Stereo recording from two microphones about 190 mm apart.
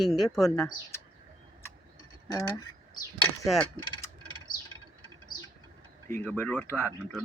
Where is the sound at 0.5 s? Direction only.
15° left (ahead or behind).